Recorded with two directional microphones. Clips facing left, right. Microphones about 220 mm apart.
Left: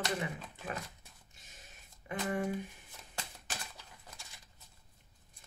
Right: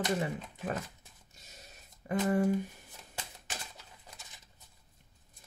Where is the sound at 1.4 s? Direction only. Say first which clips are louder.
Right 4 dB; 40° right (ahead or behind).